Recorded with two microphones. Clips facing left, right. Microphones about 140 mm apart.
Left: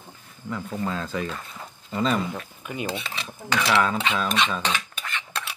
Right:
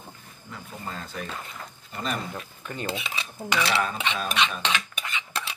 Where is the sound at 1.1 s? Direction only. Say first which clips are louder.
Left 7 dB; 90° left.